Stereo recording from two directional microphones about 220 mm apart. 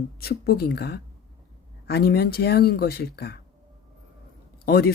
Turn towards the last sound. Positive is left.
turn(degrees=45)  # may be behind; listen again after turning